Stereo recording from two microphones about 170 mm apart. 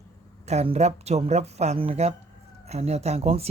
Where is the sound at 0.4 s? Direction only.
40° right (ahead or behind).